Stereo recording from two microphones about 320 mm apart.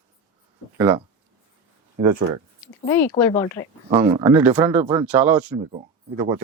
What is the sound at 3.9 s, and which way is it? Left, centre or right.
Speech, centre.